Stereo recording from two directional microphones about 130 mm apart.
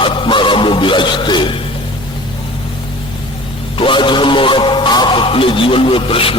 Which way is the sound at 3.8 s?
40° left (ahead or behind).